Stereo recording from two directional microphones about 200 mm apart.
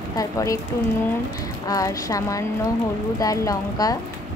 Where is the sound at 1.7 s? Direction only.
15° left (ahead or behind).